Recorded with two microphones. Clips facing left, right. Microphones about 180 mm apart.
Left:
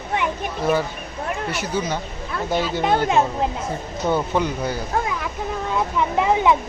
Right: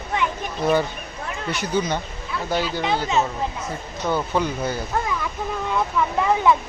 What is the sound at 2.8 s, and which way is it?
Speech, 55° left (ahead or behind).